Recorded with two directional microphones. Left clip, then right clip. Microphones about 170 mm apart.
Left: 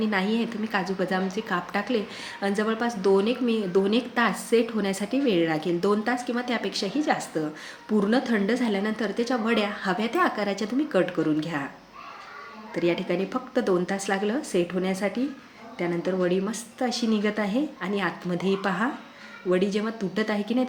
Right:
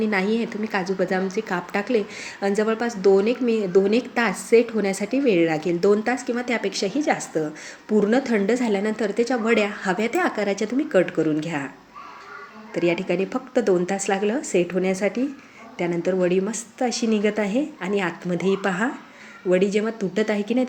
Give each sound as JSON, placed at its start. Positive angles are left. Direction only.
{"t": 0.0, "sound": "a woman's voice", "side_deg": -15}
{"t": 12.7, "sound": "a woman's voice", "side_deg": -20}